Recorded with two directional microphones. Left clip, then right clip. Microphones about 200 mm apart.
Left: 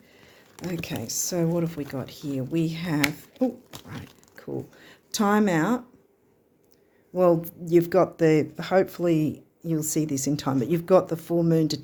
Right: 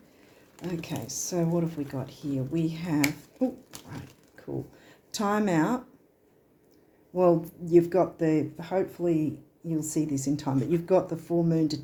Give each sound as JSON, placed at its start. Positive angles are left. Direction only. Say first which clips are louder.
{"t": 0.5, "sound": "speech", "louder": "left 3 dB", "side_deg": 40}
{"t": 7.1, "sound": "speech", "louder": "left 2 dB", "side_deg": 40}